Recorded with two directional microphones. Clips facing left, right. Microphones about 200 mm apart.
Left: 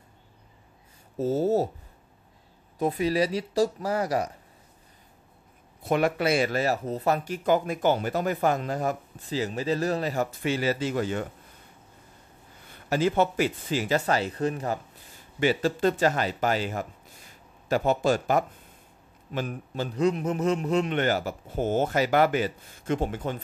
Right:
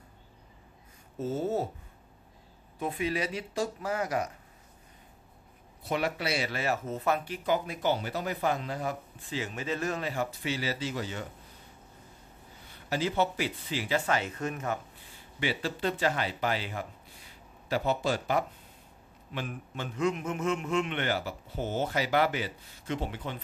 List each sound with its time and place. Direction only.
1.1 s speech: 40° left (ahead or behind)
2.8 s speech: 40° left (ahead or behind)
5.8 s speech: 50° left (ahead or behind)
12.9 s speech: 50° left (ahead or behind); by 14.8 s 35° left (ahead or behind)
15.4 s a man's voice: 45° left (ahead or behind)